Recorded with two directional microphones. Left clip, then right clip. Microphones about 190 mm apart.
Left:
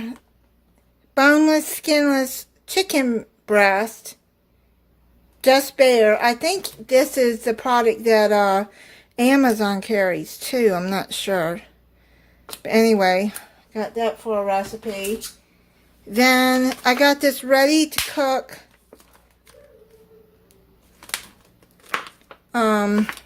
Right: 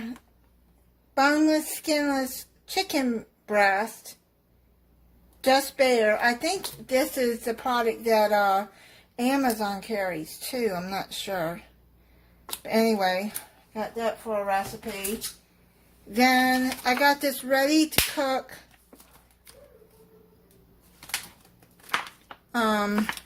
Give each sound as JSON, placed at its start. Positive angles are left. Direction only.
{"t": 1.1, "sound": "speech", "side_deg": 35}
{"t": 5.4, "sound": "a woman's voice", "side_deg": 30}
{"t": 12.6, "sound": "a woman's voice", "side_deg": 45}
{"t": 16.1, "sound": "speech", "side_deg": 35}
{"t": 22.5, "sound": "speech", "side_deg": 25}